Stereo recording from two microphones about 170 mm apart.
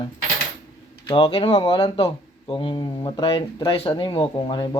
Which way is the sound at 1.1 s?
30° left (ahead or behind).